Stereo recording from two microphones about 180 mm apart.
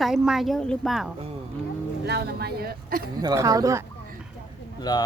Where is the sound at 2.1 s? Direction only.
60° right (ahead or behind).